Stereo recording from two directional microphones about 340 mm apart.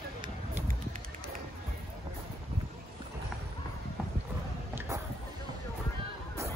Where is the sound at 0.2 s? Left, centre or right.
Centre.